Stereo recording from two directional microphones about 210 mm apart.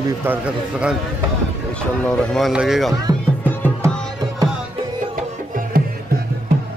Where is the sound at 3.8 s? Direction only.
15° right (ahead or behind).